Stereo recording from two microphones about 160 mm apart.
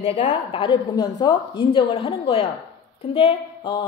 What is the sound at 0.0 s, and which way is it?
A woman's voice, 35° left (ahead or behind).